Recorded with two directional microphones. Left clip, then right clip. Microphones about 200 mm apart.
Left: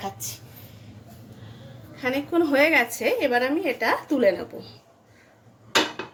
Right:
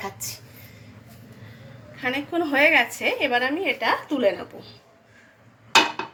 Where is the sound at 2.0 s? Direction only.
50° left (ahead or behind).